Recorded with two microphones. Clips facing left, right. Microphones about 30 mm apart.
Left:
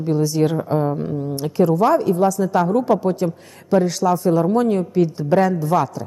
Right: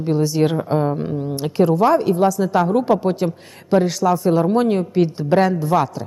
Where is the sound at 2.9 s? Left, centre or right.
Centre.